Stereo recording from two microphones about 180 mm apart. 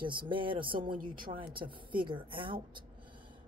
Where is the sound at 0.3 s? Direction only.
30° right (ahead or behind).